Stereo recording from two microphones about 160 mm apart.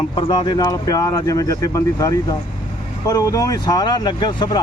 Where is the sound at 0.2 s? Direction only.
30° left (ahead or behind).